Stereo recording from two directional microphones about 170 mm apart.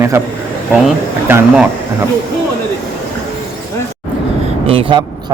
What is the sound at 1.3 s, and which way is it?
Speech, 10° right (ahead or behind).